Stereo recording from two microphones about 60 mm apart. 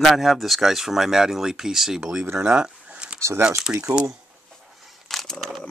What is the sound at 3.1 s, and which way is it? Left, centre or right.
Speech, right.